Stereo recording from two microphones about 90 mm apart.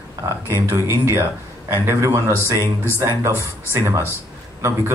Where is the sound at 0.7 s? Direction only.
25° right (ahead or behind).